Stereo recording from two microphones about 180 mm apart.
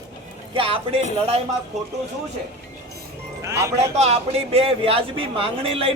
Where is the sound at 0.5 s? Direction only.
30° right (ahead or behind).